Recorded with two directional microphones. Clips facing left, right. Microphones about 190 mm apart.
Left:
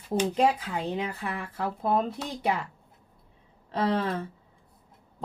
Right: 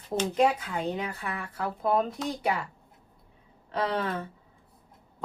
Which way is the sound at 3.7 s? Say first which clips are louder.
Left 2 dB; 30° left (ahead or behind).